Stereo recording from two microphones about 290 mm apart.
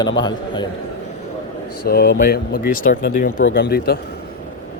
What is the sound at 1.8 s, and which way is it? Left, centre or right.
Speech, left.